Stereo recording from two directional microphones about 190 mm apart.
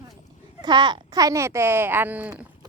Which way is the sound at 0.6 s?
25° right (ahead or behind).